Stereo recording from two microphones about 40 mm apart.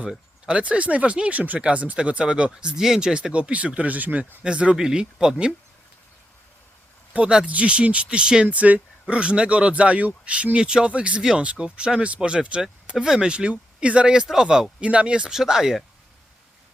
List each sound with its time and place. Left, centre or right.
0.0 s speech: right
1.3 s speech: right
4.4 s speech: right
7.3 s speech: centre
8.4 s speech: right
9.1 s speech: right
10.6 s speech: right
15.3 s speech: centre